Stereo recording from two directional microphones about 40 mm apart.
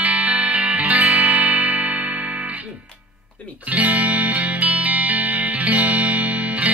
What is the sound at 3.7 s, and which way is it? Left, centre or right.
Music, right.